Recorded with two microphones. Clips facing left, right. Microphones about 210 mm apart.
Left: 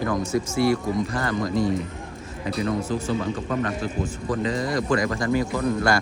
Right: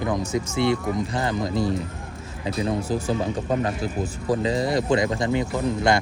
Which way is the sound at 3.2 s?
35° right (ahead or behind).